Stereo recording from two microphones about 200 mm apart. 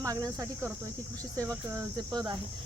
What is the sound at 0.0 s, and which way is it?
Speech, 15° right (ahead or behind).